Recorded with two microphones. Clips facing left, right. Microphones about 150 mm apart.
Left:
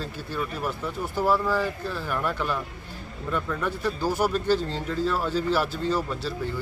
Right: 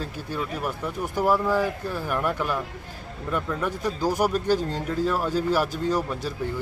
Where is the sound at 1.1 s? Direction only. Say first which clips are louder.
Right 2 dB; 15° right (ahead or behind).